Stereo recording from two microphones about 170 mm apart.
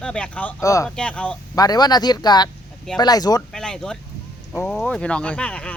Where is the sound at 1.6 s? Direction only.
25° left (ahead or behind).